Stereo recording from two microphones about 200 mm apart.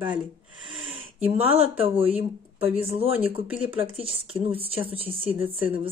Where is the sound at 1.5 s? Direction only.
30° right (ahead or behind).